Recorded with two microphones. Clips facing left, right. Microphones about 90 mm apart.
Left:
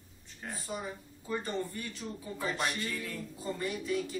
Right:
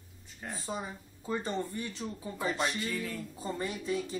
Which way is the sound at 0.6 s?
25° right (ahead or behind).